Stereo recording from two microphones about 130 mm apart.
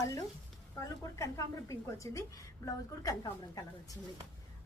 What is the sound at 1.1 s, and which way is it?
A woman's voice, 25° left (ahead or behind).